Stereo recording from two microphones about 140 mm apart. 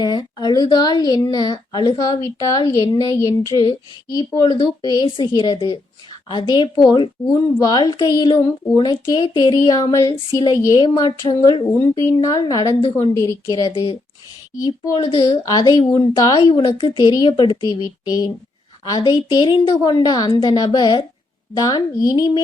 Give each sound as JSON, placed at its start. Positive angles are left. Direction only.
{"t": 0.0, "sound": "a woman's voice", "side_deg": 30}
{"t": 3.5, "sound": "a woman's voice", "side_deg": 35}
{"t": 14.9, "sound": "a woman's voice", "side_deg": 40}
{"t": 15.2, "sound": "a woman's voice", "side_deg": 30}
{"t": 16.4, "sound": "a woman's voice", "side_deg": 40}